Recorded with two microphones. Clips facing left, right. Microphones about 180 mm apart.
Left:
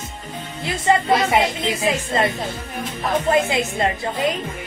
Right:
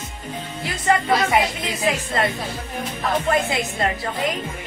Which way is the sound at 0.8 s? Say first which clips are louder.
Left 2 dB; 25° left (ahead or behind).